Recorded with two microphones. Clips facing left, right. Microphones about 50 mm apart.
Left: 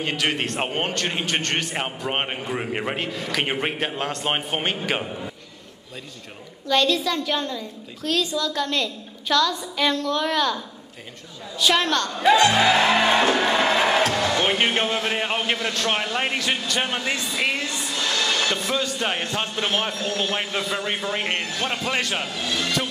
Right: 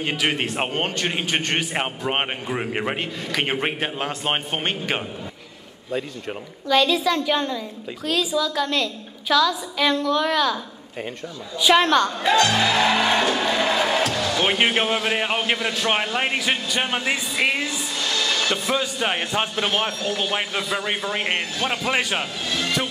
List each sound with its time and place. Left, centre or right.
0.0 s a man's voice: centre
0.7 s a woman's voice: centre
0.9 s a man's voice: centre
6.7 s a woman's voice: centre
11.7 s a man's voice: centre
12.4 s music: centre
14.0 s basketball bounce: left
14.4 s a man's voice: centre
18.0 s music: left
18.5 s a man's voice: centre
19.6 s a man's voice: centre